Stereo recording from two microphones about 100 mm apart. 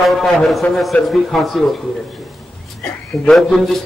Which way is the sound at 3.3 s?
Centre (ahead or behind).